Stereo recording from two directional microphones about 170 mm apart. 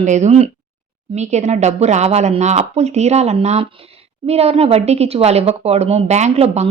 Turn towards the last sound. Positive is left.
turn(degrees=-40)  # may be behind; listen again after turning